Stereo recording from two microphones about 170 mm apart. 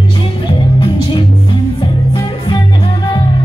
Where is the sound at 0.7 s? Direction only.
30° left (ahead or behind).